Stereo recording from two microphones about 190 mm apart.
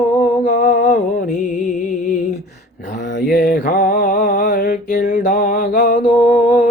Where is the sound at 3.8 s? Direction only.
40° left (ahead or behind).